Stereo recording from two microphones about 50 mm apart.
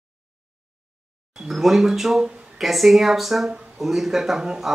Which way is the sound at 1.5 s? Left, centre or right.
Centre.